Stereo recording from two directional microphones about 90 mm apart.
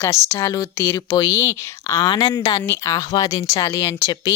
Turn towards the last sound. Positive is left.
turn(degrees=35)  # may be behind; listen again after turning